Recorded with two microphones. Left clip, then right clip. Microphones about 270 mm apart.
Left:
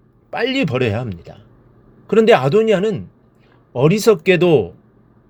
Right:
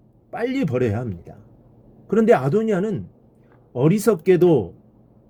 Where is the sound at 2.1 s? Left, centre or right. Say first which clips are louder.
Left 5 dB; centre.